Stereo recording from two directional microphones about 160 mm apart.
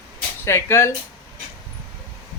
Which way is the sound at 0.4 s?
15° left (ahead or behind).